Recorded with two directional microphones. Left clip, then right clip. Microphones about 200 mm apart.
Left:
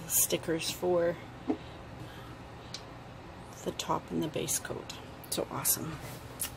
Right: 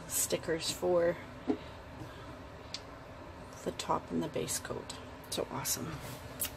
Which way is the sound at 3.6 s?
5° left (ahead or behind).